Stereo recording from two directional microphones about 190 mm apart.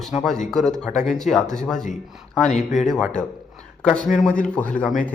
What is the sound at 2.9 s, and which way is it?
A man's voice, centre (ahead or behind).